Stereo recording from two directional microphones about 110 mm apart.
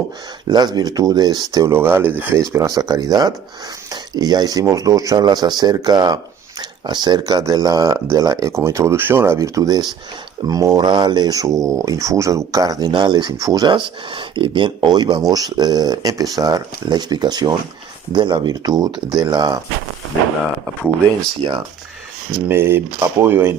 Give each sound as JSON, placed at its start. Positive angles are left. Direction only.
{"t": 0.4, "sound": "speech", "side_deg": -40}
{"t": 1.6, "sound": "speech", "side_deg": -20}
{"t": 21.4, "sound": "speech", "side_deg": -45}
{"t": 22.4, "sound": "speech", "side_deg": -20}